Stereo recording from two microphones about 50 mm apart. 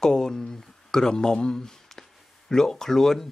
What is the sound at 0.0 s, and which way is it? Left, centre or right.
Speech, centre.